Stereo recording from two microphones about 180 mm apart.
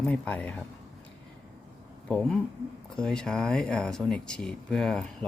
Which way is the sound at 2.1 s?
5° left (ahead or behind).